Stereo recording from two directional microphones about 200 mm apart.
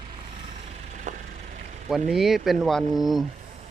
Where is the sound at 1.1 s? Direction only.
40° right (ahead or behind).